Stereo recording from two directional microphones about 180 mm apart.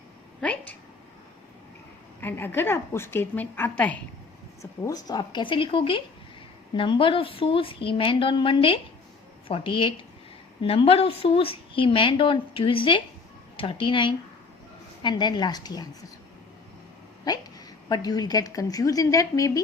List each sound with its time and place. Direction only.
0.4 s a sound: 10° left (ahead or behind)
2.2 s a woman's voice: 10° left (ahead or behind)
4.6 s speech: 20° left (ahead or behind)
17.8 s speech: 20° left (ahead or behind)